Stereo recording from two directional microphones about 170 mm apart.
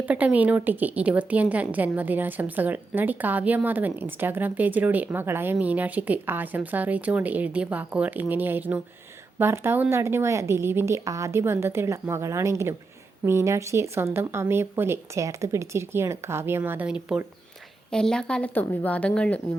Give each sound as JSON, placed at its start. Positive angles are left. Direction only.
{"t": 0.0, "sound": "a woman's voice", "side_deg": -10}